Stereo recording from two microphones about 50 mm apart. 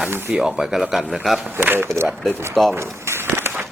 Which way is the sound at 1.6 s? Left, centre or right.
Right.